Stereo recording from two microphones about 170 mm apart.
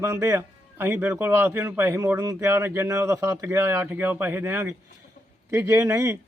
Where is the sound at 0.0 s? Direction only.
15° right (ahead or behind).